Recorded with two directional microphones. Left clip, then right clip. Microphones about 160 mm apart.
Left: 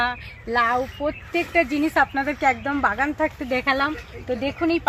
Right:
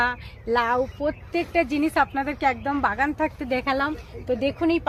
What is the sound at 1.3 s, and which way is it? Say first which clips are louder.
Speech: left 2 dB; 10° left (ahead or behind).